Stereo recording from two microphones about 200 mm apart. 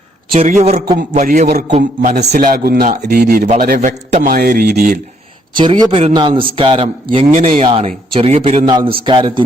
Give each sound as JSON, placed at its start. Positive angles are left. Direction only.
{"t": 0.3, "sound": "a man's voice", "side_deg": -35}
{"t": 5.5, "sound": "a man's voice", "side_deg": -25}